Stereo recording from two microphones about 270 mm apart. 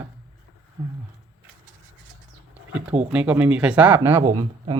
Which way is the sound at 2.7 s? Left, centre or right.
Centre.